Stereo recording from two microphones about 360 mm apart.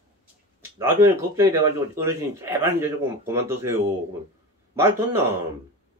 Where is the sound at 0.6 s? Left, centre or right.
Centre.